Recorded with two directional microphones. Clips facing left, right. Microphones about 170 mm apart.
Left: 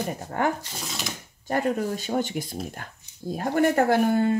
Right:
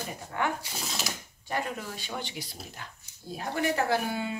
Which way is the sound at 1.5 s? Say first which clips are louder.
Left 9 dB; 45° left (ahead or behind).